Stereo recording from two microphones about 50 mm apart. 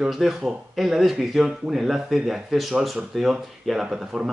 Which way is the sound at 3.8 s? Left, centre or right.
Centre.